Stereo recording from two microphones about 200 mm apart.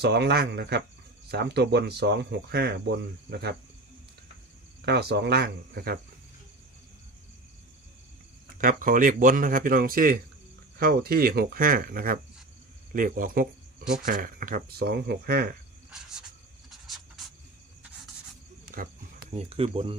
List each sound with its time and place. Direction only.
0.0 s speech: 55° right (ahead or behind)
4.9 s speech: 55° right (ahead or behind)
8.5 s speech: 45° right (ahead or behind)
15.9 s cricket: 5° right (ahead or behind)
16.6 s a sound: centre (ahead or behind)
18.6 s cricket: 45° right (ahead or behind)
19.3 s speech: 30° right (ahead or behind)